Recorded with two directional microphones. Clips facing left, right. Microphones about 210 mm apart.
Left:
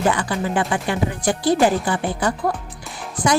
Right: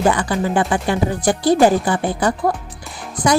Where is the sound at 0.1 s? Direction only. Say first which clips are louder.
Right 3 dB; 40° right (ahead or behind).